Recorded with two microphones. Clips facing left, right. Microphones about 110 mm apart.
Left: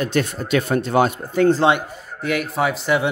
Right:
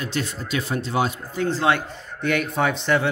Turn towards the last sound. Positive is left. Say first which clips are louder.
# left 2 dB
turn(degrees=10)  # may be behind; listen again after turning